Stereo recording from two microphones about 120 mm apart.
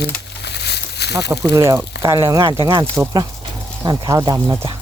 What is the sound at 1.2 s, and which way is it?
Speech, 30° right (ahead or behind).